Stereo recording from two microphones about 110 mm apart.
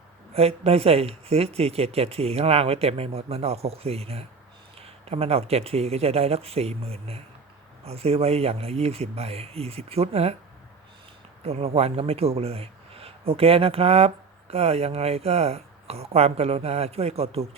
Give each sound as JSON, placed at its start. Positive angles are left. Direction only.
{"t": 0.3, "sound": "speech", "side_deg": -65}
{"t": 11.4, "sound": "speech", "side_deg": -65}